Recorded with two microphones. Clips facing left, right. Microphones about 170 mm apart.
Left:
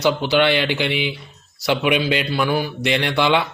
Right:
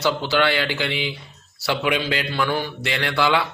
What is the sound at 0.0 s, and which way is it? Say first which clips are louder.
A man's voice: left 3 dB; 15° left (ahead or behind).